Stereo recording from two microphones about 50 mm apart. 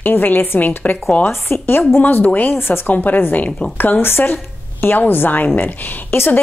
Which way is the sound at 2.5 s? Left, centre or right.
Left.